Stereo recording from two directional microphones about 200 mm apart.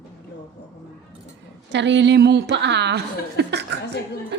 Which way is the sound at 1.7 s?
65° right (ahead or behind).